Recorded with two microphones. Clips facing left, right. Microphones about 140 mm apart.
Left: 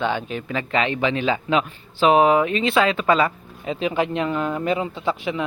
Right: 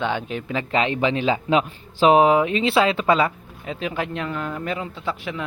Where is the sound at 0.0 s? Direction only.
10° left (ahead or behind).